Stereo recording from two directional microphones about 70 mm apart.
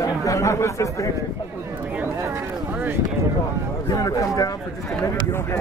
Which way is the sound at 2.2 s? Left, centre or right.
Right.